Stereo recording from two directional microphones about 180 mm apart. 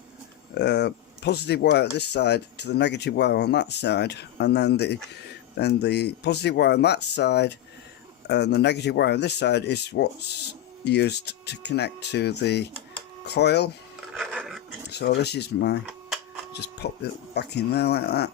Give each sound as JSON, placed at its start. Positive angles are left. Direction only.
{"t": 0.5, "sound": "speech", "side_deg": 70}
{"t": 14.1, "sound": "a sound", "side_deg": 0}
{"t": 14.8, "sound": "speech", "side_deg": 65}